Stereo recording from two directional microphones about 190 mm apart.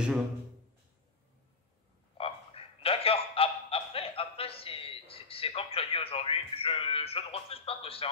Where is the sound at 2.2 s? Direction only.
30° left (ahead or behind).